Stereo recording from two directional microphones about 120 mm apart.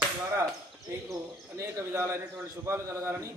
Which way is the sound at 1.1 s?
25° right (ahead or behind).